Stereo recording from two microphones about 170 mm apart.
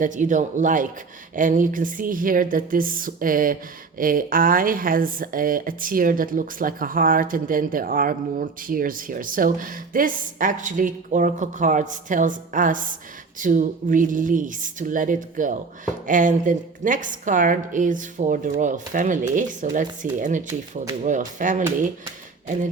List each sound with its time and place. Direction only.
0.0 s a woman's voice: 50° right (ahead or behind)